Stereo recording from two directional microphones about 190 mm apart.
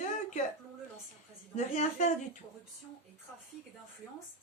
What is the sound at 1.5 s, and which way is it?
Speech, 40° left (ahead or behind).